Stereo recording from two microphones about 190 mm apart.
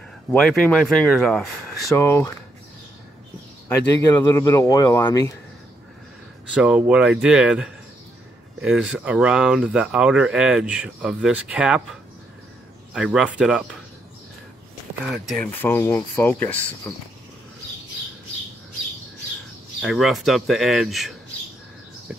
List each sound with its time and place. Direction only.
0.3 s speech: 5° left (ahead or behind)
1.9 s speech: 15° left (ahead or behind)
3.6 s speech: 15° left (ahead or behind)
6.5 s speech: 5° right (ahead or behind)
12.9 s speech: 5° right (ahead or behind)
15.2 s speech: 5° left (ahead or behind)
19.8 s speech: centre (ahead or behind)